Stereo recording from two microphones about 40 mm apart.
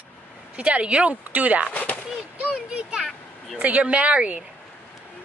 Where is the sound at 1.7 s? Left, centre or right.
Left.